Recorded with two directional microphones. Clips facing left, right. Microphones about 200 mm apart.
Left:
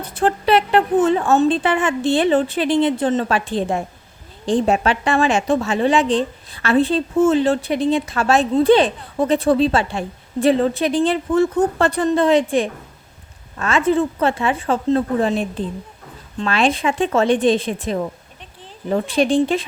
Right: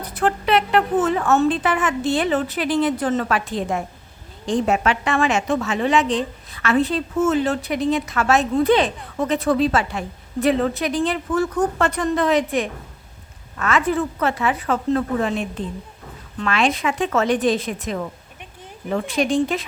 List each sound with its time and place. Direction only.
0.0 s a woman's voice: 30° left (ahead or behind)